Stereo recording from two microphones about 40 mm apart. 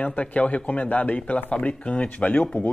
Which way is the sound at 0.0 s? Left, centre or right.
Left.